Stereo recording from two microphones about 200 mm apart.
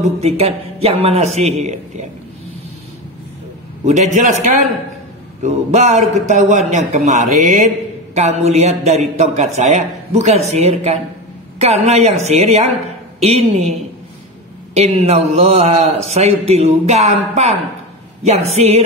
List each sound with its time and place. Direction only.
0.2 s a man's voice: 30° right (ahead or behind)
3.8 s a man's voice: 35° right (ahead or behind)